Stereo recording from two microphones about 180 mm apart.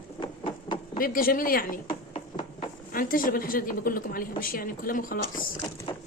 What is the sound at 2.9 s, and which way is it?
A woman's voice, 50° left (ahead or behind).